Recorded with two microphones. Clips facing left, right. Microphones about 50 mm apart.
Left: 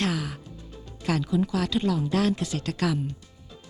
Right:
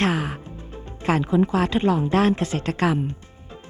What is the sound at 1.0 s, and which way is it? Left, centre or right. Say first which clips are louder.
Speech: right 5 dB; right.